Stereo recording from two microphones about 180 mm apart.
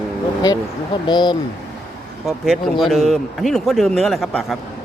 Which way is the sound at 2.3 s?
Centre (ahead or behind).